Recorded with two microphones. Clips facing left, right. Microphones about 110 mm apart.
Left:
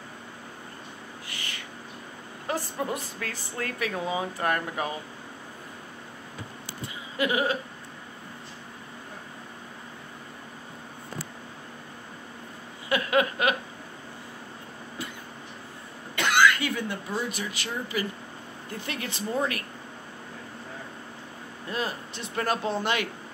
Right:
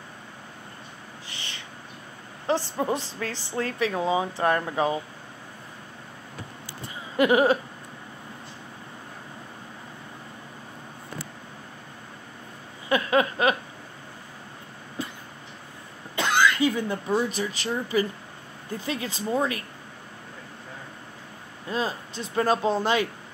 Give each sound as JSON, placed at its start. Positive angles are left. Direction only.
{"t": 1.3, "sound": "owl", "side_deg": -25}
{"t": 2.4, "sound": "a woman's voice", "side_deg": -25}
{"t": 7.2, "sound": "a sound", "side_deg": -55}
{"t": 12.9, "sound": "a sound", "side_deg": -30}
{"t": 16.2, "sound": "cough", "side_deg": -25}
{"t": 17.1, "sound": "speech", "side_deg": -35}
{"t": 18.9, "sound": "a woman's voice", "side_deg": -25}
{"t": 21.6, "sound": "a woman's voice", "side_deg": -25}